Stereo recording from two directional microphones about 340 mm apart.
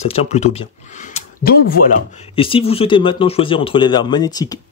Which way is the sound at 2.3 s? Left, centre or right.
Centre.